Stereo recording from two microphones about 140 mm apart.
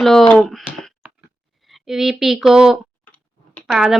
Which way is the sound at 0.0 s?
5° left (ahead or behind).